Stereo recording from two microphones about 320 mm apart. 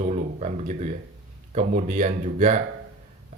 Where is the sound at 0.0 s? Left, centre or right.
Right.